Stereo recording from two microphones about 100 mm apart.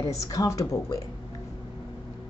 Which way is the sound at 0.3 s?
35° left (ahead or behind).